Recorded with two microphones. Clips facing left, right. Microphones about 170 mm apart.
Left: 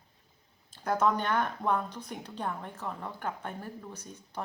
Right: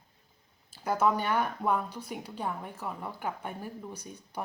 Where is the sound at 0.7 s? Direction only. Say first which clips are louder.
Even; 5° right (ahead or behind).